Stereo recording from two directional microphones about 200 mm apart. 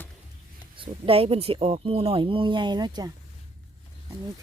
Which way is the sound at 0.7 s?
25° right (ahead or behind).